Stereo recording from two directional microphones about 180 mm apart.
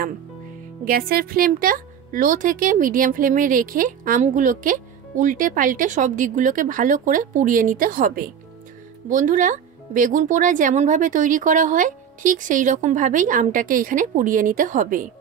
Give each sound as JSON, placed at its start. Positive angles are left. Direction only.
{"t": 0.8, "sound": "speech", "side_deg": -55}